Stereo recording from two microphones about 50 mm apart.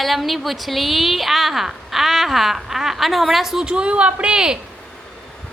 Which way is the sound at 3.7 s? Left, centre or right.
Right.